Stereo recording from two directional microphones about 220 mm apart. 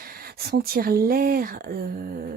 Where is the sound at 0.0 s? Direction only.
40° right (ahead or behind).